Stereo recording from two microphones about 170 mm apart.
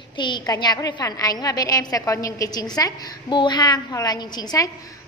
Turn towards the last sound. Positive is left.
turn(degrees=20)  # may be behind; listen again after turning